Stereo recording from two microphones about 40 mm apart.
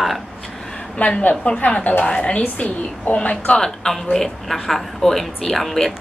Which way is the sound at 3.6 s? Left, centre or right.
Centre.